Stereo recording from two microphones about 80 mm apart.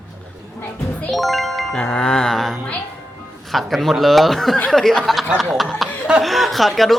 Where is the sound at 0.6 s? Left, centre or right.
Centre.